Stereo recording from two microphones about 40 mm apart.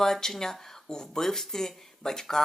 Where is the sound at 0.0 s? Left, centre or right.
Centre.